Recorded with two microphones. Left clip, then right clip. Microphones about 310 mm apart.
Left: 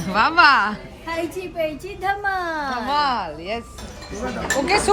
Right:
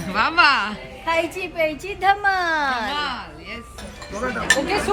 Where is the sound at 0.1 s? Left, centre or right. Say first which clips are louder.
Left 2 dB; centre.